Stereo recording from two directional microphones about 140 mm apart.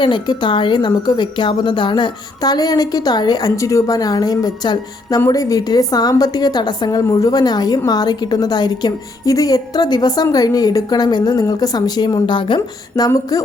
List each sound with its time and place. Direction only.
0.0 s a woman's voice: 35° left (ahead or behind)